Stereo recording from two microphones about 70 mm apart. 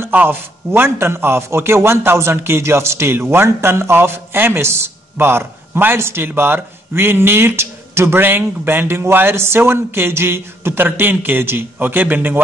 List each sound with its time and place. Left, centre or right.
0.1 s a man's voice: right